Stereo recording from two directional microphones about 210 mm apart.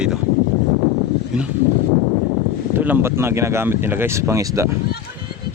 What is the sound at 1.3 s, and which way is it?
Speech, 5° right (ahead or behind).